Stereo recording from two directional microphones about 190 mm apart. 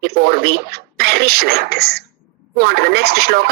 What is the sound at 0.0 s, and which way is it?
Speech, 55° right (ahead or behind).